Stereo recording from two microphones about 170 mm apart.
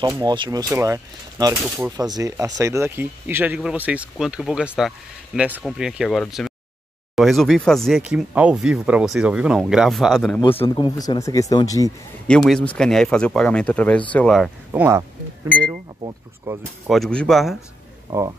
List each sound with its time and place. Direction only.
0.0 s speech: 25° right (ahead or behind); by 10.4 s 5° left (ahead or behind)
10.4 s speech: 30° left (ahead or behind)
12.3 s speech: centre (ahead or behind)
14.7 s speech: 15° right (ahead or behind)
16.5 s speech: 15° right (ahead or behind)
16.8 s speech: centre (ahead or behind)